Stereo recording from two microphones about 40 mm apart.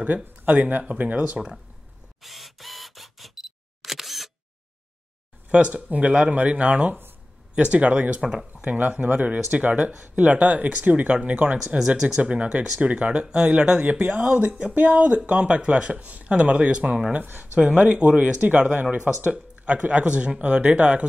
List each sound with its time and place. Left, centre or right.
0.0 s speech: right
1.2 s speech: right
2.2 s camera: centre
5.5 s speech: right
8.6 s speech: right
11.7 s speech: right
14.0 s speech: right
16.1 s speech: right
16.3 s speech: right
17.1 s speech: right
17.6 s speech: right
19.3 s speech: right